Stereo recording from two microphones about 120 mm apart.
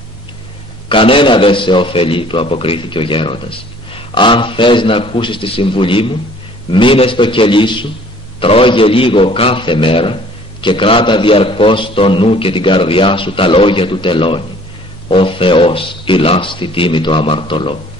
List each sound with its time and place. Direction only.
0.8 s a man's voice: 45° left (ahead or behind)